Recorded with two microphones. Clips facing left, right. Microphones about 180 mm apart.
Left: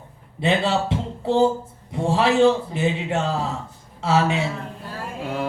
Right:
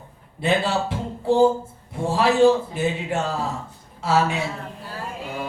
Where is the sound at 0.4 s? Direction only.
25° left (ahead or behind).